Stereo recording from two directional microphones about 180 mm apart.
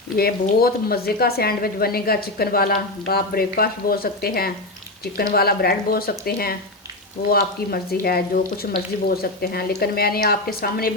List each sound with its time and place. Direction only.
0.2 s a woman's voice: 55° left (ahead or behind)